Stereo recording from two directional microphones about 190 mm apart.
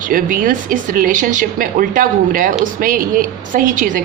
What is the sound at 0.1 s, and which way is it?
A woman's voice, 45° right (ahead or behind).